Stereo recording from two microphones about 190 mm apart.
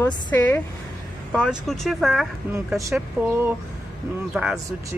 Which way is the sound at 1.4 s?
Centre (ahead or behind).